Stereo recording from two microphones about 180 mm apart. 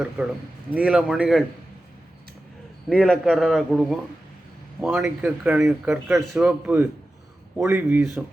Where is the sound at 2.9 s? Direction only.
Centre (ahead or behind).